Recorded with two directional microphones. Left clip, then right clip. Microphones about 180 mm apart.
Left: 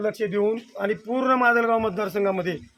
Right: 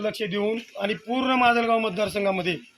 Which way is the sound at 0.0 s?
10° left (ahead or behind).